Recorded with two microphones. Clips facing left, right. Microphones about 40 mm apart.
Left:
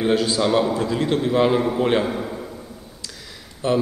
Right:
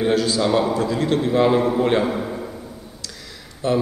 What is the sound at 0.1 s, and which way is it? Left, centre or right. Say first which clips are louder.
A man's voice: left 1 dB; centre.